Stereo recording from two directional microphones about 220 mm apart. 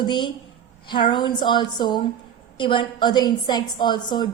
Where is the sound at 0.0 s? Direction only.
20° left (ahead or behind).